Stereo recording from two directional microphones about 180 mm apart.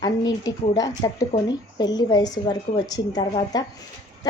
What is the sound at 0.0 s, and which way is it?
Speech, 25° left (ahead or behind).